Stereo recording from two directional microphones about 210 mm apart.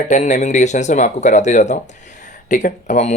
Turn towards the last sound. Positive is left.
turn(degrees=35)  # may be behind; listen again after turning